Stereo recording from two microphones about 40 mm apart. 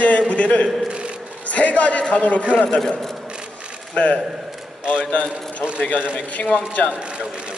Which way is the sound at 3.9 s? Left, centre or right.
Left.